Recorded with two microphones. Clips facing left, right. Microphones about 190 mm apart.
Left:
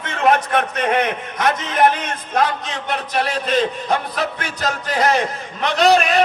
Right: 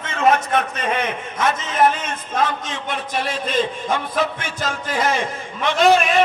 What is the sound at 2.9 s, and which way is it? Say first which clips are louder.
A man's voice: left 3 dB; 45° left (ahead or behind).